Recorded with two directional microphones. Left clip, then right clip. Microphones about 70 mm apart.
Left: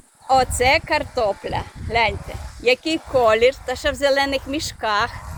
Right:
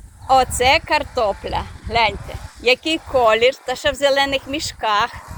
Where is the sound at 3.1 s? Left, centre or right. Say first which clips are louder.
Right 1 dB; left.